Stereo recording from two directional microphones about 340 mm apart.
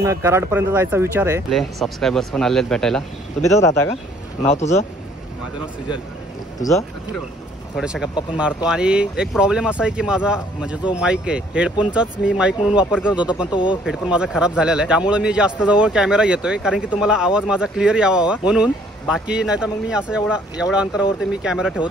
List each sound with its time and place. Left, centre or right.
0.0 s speech: centre
4.4 s speech: centre
7.7 s a man's voice: centre
13.5 s speech: centre
13.8 s a man's voice: centre